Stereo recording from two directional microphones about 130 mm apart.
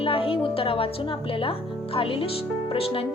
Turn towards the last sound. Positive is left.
turn(degrees=45)  # may be behind; listen again after turning